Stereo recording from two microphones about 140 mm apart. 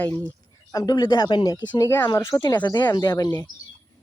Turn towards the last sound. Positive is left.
turn(degrees=30)  # may be behind; listen again after turning